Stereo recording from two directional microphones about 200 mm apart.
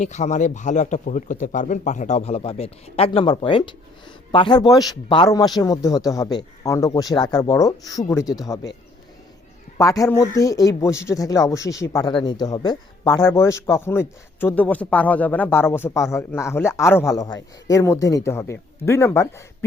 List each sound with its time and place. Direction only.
0.0 s a man's voice: 35° left (ahead or behind); by 8.3 s 15° left (ahead or behind)
9.7 s a man's voice: 15° left (ahead or behind)